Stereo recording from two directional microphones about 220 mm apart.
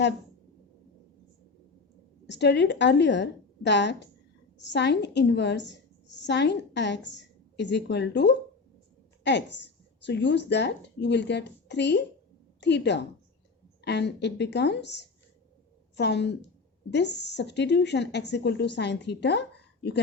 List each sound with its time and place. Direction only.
2.2 s a woman's voice: 50° left (ahead or behind)